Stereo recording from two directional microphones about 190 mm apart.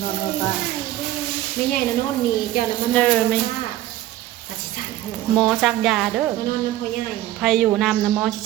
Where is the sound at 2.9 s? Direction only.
5° left (ahead or behind).